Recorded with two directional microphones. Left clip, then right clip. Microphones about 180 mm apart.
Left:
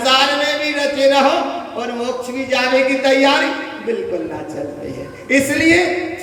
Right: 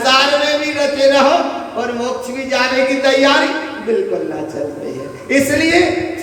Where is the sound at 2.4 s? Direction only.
60° left (ahead or behind).